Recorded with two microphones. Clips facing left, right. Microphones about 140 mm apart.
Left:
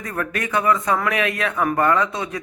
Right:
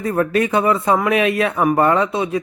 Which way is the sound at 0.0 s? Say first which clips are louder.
Right 9 dB; 25° right (ahead or behind).